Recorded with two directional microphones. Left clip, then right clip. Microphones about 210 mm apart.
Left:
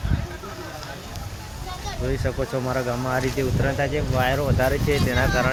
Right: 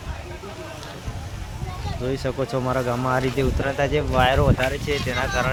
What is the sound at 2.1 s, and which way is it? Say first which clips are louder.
Speech: right 2 dB; 10° right (ahead or behind).